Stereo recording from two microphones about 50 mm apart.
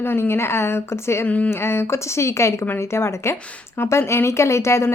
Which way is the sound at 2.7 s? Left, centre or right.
Left.